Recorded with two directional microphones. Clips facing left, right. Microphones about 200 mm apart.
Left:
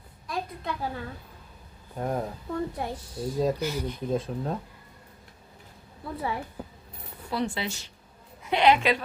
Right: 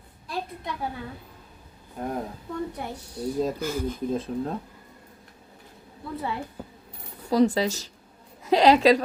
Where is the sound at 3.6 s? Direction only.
50° right (ahead or behind).